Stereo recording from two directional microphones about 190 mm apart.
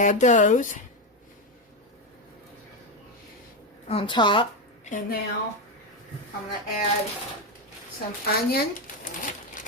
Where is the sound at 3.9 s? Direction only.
25° left (ahead or behind).